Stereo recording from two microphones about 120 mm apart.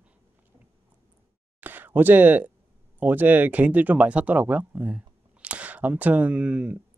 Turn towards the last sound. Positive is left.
turn(degrees=-10)  # may be behind; listen again after turning